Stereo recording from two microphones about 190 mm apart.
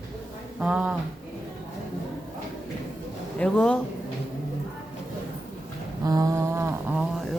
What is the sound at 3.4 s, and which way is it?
Speech, 5° left (ahead or behind).